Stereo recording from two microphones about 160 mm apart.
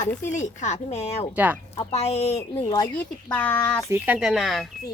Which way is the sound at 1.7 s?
40° left (ahead or behind).